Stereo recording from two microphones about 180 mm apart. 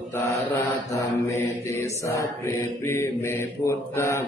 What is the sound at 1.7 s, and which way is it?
Mantra, 15° left (ahead or behind).